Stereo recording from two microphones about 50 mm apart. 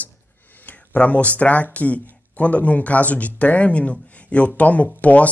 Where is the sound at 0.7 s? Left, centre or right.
Left.